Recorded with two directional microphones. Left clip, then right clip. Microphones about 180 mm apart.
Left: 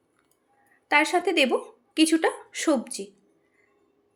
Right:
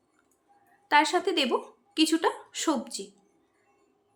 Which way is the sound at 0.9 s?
10° left (ahead or behind).